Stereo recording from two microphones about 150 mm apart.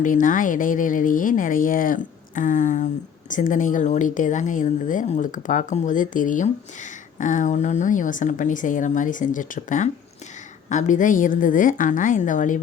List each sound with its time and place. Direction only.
0.0 s speech: 60° left (ahead or behind)